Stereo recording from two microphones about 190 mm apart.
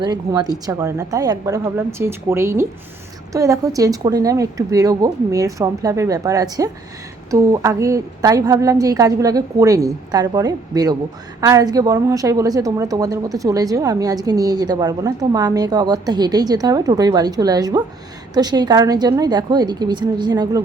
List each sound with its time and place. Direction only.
0.0 s a woman's voice: 20° right (ahead or behind)